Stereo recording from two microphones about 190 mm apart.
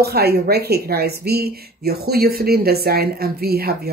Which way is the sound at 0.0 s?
55° right (ahead or behind).